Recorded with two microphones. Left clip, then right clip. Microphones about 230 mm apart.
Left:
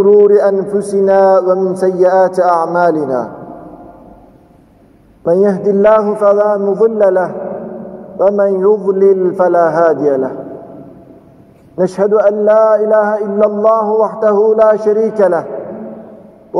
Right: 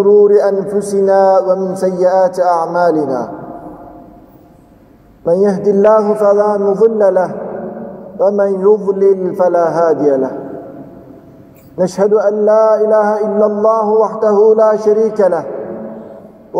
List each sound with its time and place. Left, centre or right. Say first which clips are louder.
0.1 s mantra: right 1 dB; left
5.2 s mantra: left 1 dB; left
11.7 s mantra: even; left